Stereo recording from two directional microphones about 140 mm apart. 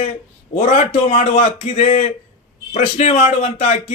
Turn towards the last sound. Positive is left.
turn(degrees=55)  # may be behind; listen again after turning